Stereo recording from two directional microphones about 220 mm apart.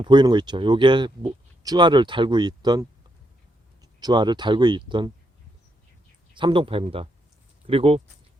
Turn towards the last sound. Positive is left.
turn(degrees=-25)  # may be behind; listen again after turning